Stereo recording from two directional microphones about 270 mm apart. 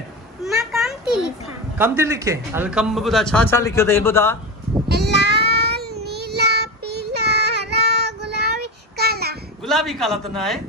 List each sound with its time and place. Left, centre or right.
0.4 s speech: centre
4.9 s a sound: right
5.3 s child singing: right
9.6 s a man's voice: centre